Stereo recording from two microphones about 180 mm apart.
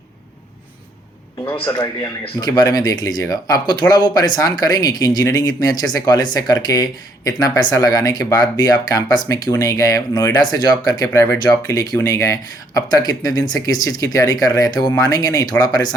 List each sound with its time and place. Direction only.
1.5 s speech: 25° left (ahead or behind)